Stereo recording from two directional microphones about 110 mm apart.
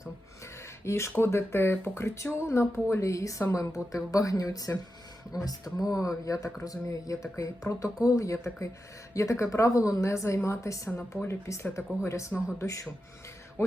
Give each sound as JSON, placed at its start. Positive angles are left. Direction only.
{"t": 0.9, "sound": "speech", "side_deg": 25}